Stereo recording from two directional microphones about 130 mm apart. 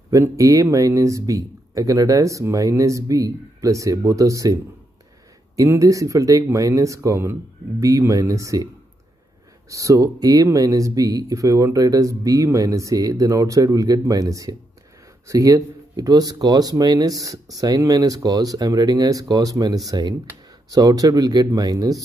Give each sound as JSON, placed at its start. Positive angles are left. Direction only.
{"t": 0.1, "sound": "speech", "side_deg": -25}
{"t": 5.6, "sound": "speech", "side_deg": -25}
{"t": 9.7, "sound": "speech", "side_deg": -25}